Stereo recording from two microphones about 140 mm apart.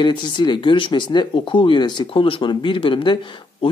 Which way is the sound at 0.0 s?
35° left (ahead or behind).